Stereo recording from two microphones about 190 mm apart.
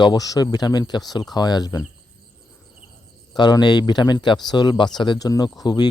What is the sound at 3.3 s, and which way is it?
Speech, 20° left (ahead or behind).